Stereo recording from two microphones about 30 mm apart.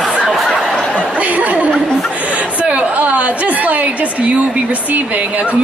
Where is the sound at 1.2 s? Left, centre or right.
Right.